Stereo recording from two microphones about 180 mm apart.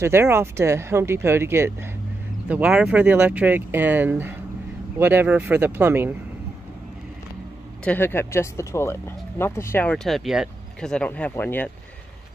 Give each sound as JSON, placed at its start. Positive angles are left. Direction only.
{"t": 0.0, "sound": "speech", "side_deg": -15}
{"t": 7.8, "sound": "speech", "side_deg": 10}